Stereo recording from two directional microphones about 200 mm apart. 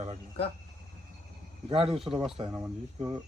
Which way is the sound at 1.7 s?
30° right (ahead or behind).